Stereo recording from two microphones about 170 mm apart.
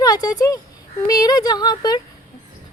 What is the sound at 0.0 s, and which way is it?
A woman's voice, 25° left (ahead or behind).